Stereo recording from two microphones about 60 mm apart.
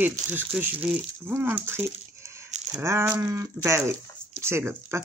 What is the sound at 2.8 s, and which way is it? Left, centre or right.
Speech, right.